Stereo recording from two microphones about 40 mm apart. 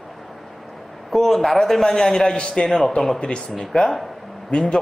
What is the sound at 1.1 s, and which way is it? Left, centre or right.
A man's voice, centre.